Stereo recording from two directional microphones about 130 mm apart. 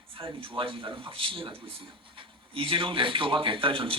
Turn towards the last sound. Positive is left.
turn(degrees=-45)  # may be behind; listen again after turning